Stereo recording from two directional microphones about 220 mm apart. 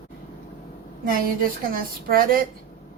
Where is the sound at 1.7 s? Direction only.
40° right (ahead or behind).